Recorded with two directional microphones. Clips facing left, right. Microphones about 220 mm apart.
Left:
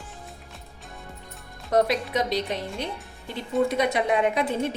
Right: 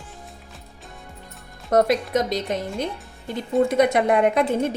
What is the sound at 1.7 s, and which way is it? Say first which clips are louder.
A woman's voice: right 4 dB; 45° right (ahead or behind).